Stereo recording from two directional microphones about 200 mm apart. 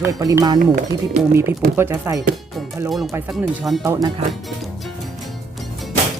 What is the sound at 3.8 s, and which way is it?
Speech, 15° right (ahead or behind).